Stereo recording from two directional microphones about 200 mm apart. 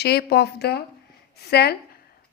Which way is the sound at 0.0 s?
55° left (ahead or behind).